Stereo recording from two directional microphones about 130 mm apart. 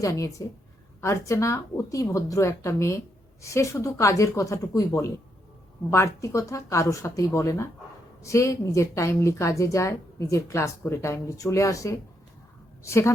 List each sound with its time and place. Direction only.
0.0 s a woman's voice: 25° left (ahead or behind)